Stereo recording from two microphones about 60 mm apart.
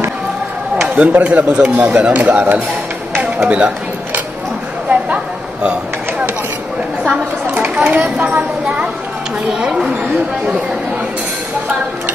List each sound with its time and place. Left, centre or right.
0.8 s speech: right
4.8 s chop: centre
7.1 s a sound: right
8.2 s a woman's voice: right
9.7 s speech: centre